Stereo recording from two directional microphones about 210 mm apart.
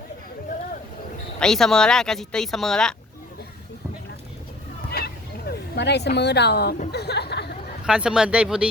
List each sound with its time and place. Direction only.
1.4 s speech: centre (ahead or behind)
4.9 s a sound: 50° left (ahead or behind)
6.7 s chatter: 50° left (ahead or behind)
7.9 s speech: 5° right (ahead or behind)